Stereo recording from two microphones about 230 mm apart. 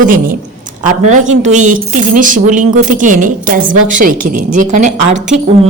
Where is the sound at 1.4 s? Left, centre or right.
Right.